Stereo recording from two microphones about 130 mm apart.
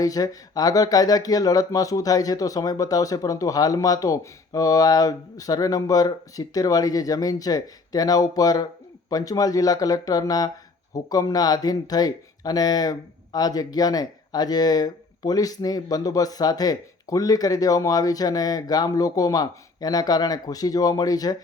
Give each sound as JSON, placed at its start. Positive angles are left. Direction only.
{"t": 0.0, "sound": "speech", "side_deg": 30}